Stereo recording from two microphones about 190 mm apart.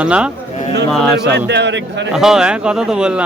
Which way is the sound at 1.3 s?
65° right (ahead or behind).